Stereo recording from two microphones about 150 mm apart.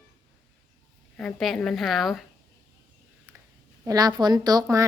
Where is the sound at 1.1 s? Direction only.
5° left (ahead or behind).